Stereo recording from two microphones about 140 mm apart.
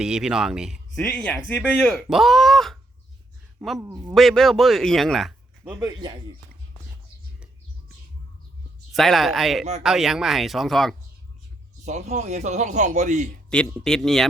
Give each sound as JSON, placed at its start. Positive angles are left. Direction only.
{"t": 0.0, "sound": "a man's voice", "side_deg": -5}
{"t": 1.0, "sound": "speech", "side_deg": 15}
{"t": 2.0, "sound": "a man's voice", "side_deg": 0}
{"t": 3.8, "sound": "speech", "side_deg": -20}
{"t": 4.1, "sound": "a man's voice", "side_deg": 0}
{"t": 5.8, "sound": "speech", "side_deg": -30}
{"t": 8.9, "sound": "a man's voice", "side_deg": 0}
{"t": 11.9, "sound": "speech", "side_deg": -55}
{"t": 13.5, "sound": "a man's voice", "side_deg": 5}